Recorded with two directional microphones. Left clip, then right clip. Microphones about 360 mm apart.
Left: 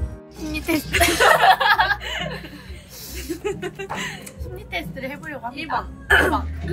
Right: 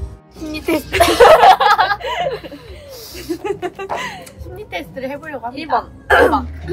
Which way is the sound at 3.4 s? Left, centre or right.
Right.